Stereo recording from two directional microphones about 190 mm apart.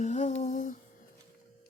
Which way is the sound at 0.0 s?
35° left (ahead or behind).